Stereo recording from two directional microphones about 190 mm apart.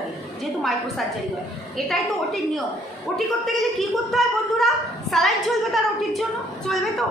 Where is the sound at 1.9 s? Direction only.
Centre (ahead or behind).